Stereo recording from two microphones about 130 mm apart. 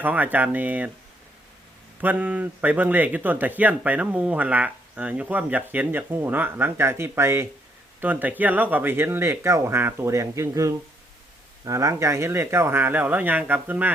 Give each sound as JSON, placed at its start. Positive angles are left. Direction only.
{"t": 0.0, "sound": "speech", "side_deg": -10}
{"t": 2.0, "sound": "speech", "side_deg": -15}